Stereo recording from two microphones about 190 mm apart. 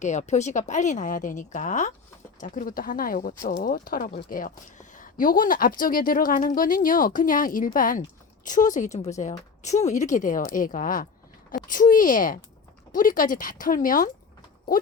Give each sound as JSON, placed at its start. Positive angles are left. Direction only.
{"t": 0.0, "sound": "speech", "side_deg": 40}